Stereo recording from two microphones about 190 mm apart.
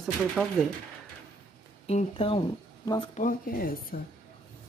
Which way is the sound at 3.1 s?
45° left (ahead or behind).